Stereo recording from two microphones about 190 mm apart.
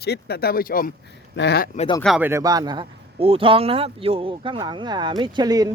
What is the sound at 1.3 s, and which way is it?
Speech, 60° left (ahead or behind).